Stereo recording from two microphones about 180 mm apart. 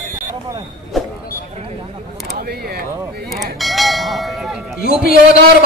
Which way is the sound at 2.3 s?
60° right (ahead or behind).